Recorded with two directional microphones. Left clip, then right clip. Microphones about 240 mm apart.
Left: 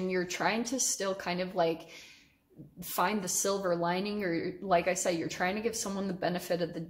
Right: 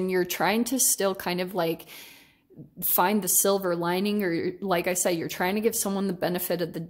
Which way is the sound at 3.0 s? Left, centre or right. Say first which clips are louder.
Right 6 dB; right.